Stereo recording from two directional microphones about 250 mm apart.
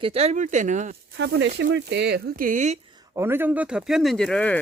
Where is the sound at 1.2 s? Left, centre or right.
Right.